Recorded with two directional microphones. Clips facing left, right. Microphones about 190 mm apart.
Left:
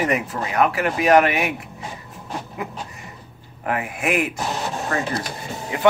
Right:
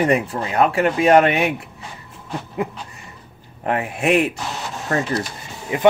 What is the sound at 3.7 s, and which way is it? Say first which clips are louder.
Speech: right 4 dB; 30° right (ahead or behind).